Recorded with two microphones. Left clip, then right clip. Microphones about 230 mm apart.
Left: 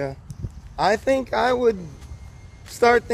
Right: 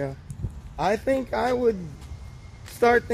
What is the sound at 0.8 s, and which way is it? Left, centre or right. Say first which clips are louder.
Speech: left 4 dB; left.